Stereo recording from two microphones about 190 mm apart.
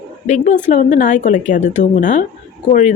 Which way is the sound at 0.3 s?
40° left (ahead or behind).